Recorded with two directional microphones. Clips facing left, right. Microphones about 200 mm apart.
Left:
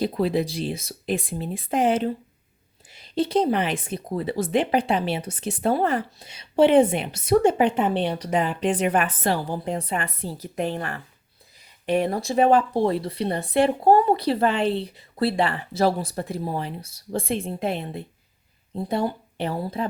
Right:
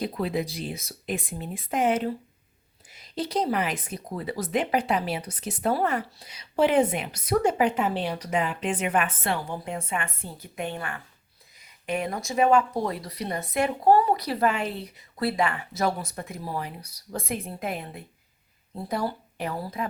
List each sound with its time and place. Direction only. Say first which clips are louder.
0.0 s speech: left 5 dB; 30° left (ahead or behind)